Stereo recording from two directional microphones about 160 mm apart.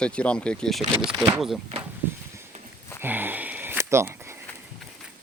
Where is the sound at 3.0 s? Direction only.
10° right (ahead or behind).